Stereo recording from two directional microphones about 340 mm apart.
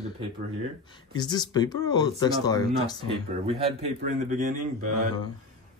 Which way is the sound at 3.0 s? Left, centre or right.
Centre.